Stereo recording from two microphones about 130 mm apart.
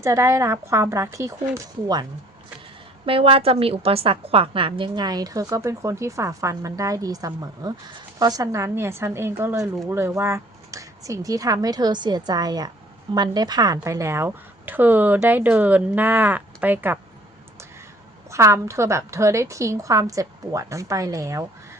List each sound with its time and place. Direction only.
0.0 s a woman's voice: 25° right (ahead or behind)
3.1 s a woman's voice: 45° right (ahead or behind); by 17.0 s 15° right (ahead or behind)
18.3 s a woman's voice: 20° right (ahead or behind)